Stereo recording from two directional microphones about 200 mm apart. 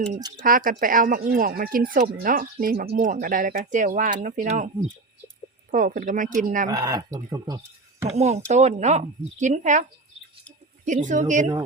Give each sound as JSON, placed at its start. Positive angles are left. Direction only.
{"t": 0.3, "sound": "speech", "side_deg": -45}
{"t": 5.7, "sound": "speech", "side_deg": -40}
{"t": 6.7, "sound": "speech", "side_deg": -20}
{"t": 8.0, "sound": "speech", "side_deg": -35}
{"t": 10.8, "sound": "speech", "side_deg": -40}